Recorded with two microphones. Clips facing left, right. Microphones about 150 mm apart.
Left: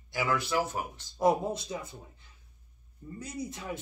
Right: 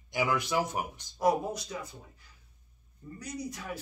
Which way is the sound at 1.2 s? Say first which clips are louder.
Left 1 dB; 25° left (ahead or behind).